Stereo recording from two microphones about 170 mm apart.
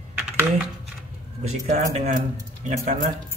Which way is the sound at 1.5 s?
40° right (ahead or behind).